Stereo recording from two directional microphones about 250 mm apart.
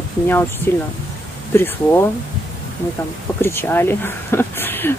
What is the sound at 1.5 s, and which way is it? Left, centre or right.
Speech, centre.